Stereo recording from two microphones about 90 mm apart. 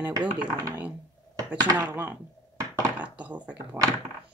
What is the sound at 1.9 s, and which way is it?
Speech, 20° right (ahead or behind).